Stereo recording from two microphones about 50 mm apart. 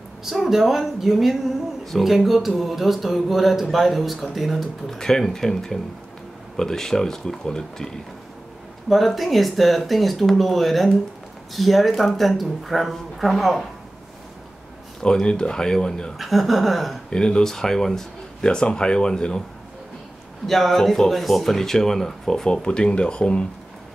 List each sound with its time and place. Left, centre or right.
0.2 s speech: centre
4.9 s speech: centre
8.8 s speech: centre
15.0 s speech: centre
16.2 s speech: centre
17.1 s speech: centre
20.4 s speech: centre; by 23.4 s left